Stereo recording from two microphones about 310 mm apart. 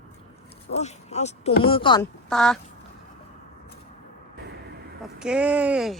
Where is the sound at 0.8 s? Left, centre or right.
Left.